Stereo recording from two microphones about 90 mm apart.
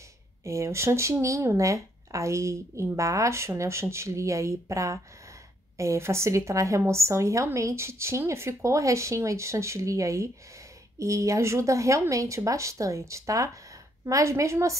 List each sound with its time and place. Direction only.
0.4 s a woman's voice: 30° right (ahead or behind)